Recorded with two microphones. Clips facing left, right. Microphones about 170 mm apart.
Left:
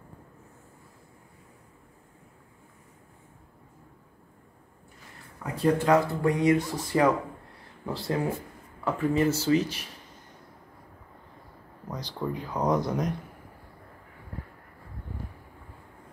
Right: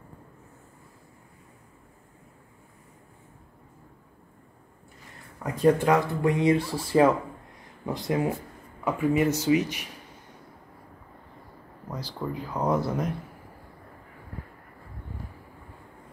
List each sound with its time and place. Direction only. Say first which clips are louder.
5.4 s speech: right 3 dB; 15° right (ahead or behind)
11.9 s speech: left 1 dB; 5° right (ahead or behind)